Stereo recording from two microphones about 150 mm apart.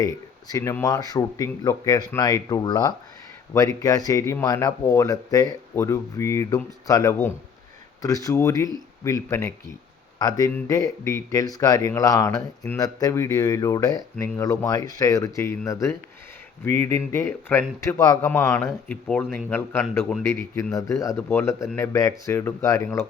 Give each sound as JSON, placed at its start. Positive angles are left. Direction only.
{"t": 0.0, "sound": "speech", "side_deg": 25}
{"t": 18.3, "sound": "speech", "side_deg": 10}